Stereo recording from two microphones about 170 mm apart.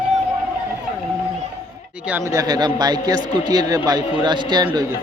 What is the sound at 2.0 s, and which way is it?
A man's voice, 15° right (ahead or behind).